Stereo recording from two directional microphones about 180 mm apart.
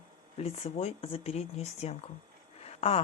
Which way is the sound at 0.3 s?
35° left (ahead or behind).